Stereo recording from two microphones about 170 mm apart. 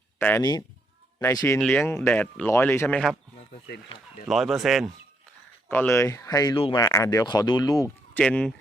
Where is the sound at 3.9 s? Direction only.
35° left (ahead or behind).